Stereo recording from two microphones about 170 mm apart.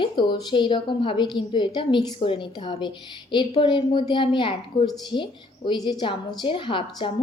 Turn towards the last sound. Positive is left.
turn(degrees=30)  # may be behind; listen again after turning